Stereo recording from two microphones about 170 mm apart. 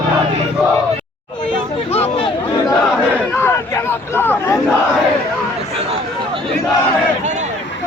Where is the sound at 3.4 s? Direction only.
15° left (ahead or behind).